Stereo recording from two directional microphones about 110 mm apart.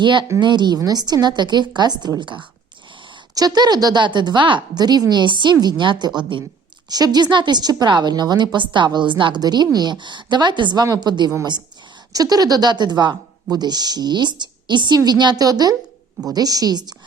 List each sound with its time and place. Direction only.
0.0 s a woman's voice: 45° right (ahead or behind)